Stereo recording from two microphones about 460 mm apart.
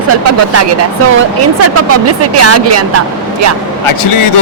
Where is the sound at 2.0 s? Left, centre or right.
Right.